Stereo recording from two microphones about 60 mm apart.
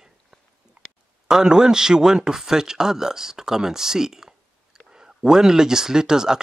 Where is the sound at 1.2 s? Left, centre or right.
Centre.